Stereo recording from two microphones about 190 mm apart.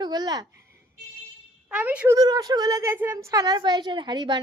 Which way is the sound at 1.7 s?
5° right (ahead or behind).